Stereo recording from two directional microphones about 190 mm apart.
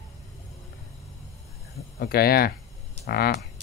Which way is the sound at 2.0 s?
55° left (ahead or behind).